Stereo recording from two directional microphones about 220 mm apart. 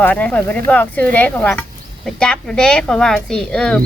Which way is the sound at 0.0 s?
5° left (ahead or behind).